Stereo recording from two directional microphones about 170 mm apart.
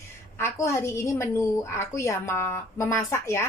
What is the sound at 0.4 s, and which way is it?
A woman's voice, 15° left (ahead or behind).